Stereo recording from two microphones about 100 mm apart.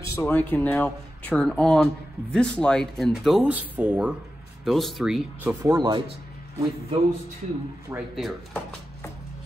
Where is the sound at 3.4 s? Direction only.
15° right (ahead or behind).